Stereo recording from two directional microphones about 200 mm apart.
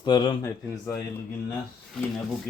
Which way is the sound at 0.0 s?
20° left (ahead or behind).